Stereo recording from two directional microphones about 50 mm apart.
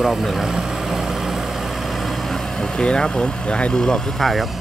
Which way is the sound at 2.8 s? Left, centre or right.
Centre.